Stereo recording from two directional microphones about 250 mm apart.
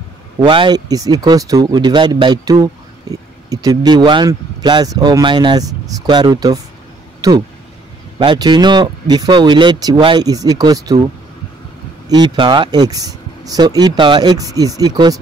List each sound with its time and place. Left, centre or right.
0.5 s speech: centre
12.1 s speech: centre